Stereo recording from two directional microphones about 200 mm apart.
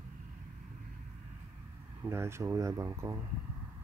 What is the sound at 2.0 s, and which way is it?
Speech, 10° right (ahead or behind).